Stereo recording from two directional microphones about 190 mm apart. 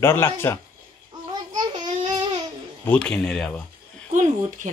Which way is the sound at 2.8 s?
5° left (ahead or behind).